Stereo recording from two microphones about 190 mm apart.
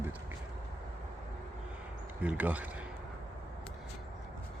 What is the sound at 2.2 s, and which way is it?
Speech, 10° right (ahead or behind).